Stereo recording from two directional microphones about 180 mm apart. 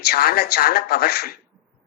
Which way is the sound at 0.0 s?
55° left (ahead or behind).